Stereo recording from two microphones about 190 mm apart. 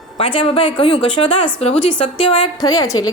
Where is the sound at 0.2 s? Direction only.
30° left (ahead or behind).